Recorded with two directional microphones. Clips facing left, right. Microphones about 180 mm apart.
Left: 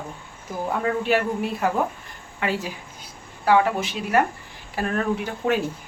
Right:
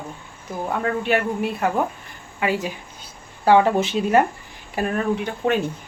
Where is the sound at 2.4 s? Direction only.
15° right (ahead or behind).